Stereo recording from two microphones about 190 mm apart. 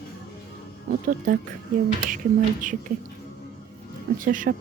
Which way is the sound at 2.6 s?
45° right (ahead or behind).